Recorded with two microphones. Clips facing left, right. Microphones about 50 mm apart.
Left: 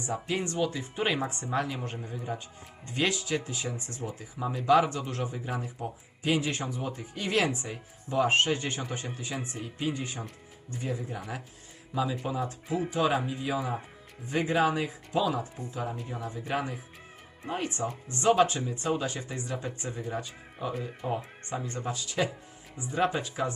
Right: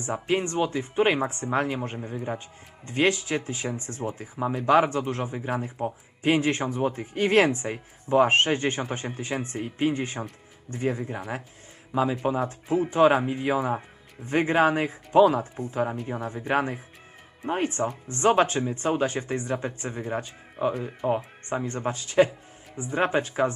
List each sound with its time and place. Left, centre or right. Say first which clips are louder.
0.0 s a man's voice: right 5 dB; right
12.2 s a man's voice: right 6 dB; right